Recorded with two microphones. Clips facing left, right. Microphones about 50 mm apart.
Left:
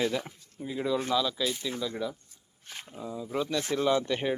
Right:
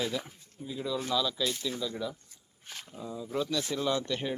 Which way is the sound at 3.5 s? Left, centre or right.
Left.